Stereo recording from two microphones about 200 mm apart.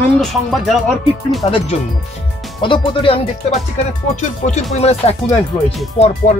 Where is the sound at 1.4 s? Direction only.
25° left (ahead or behind).